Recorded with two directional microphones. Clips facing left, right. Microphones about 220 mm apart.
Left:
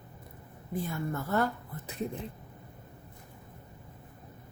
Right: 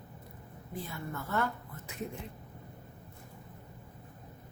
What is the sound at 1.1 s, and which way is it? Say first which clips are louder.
Speech: left 3 dB; 35° left (ahead or behind).